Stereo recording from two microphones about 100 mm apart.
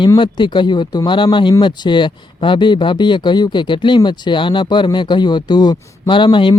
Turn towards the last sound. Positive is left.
turn(degrees=50)  # may be behind; listen again after turning